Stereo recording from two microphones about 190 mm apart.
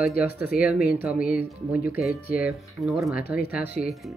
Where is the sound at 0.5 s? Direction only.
50° left (ahead or behind).